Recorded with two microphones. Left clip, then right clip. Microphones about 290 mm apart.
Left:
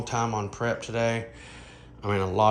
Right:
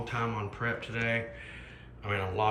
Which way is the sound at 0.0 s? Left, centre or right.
Centre.